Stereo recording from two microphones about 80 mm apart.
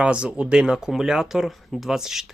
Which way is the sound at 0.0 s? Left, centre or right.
Centre.